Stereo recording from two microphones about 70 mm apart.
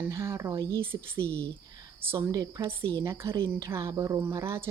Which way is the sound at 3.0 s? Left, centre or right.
Right.